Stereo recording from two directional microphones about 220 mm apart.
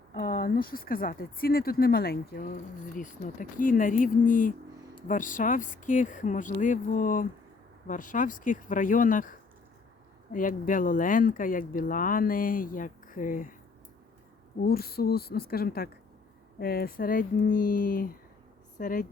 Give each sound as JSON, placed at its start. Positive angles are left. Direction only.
{"t": 0.1, "sound": "speech", "side_deg": 40}
{"t": 14.6, "sound": "speech", "side_deg": 45}